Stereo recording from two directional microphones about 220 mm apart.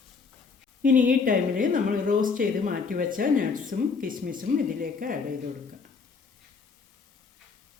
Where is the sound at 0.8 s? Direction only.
40° right (ahead or behind).